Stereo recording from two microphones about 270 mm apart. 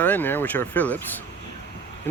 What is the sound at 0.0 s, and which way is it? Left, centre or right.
Speech, centre.